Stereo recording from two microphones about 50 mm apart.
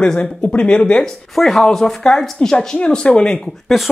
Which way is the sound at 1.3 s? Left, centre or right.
Centre.